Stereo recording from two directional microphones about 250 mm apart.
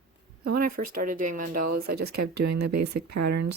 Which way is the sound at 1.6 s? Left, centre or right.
Right.